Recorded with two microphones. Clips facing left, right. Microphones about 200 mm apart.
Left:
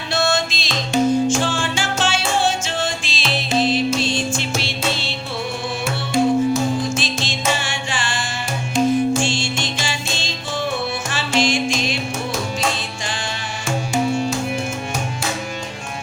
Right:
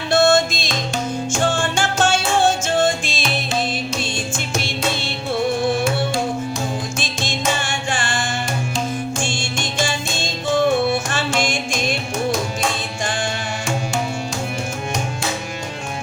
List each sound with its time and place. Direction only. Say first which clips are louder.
0.1 s music: right 6 dB; 50° right (ahead or behind)
4.4 s music: even; 50° right (ahead or behind)
6.9 s music: left 1 dB; 50° right (ahead or behind)
9.2 s music: left 2 dB; 50° right (ahead or behind)